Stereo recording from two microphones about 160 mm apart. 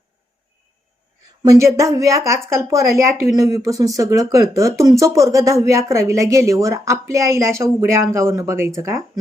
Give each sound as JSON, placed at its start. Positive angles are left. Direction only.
{"t": 1.4, "sound": "a woman's voice", "side_deg": -20}